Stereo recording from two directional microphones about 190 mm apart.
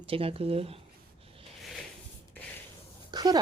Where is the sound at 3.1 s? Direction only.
20° right (ahead or behind).